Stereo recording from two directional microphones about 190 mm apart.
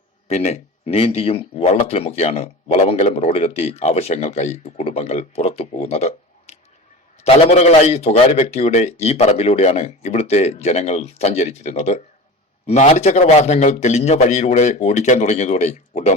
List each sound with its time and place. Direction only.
0.3 s speech: 35° left (ahead or behind)